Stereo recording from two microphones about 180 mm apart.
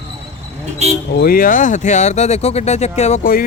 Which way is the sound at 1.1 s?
55° left (ahead or behind).